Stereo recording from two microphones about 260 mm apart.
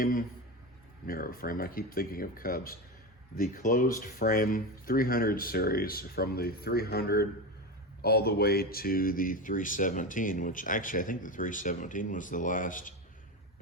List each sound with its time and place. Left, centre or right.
0.0 s speech: left